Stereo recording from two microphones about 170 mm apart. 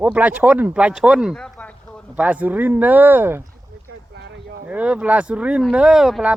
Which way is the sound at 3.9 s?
80° right.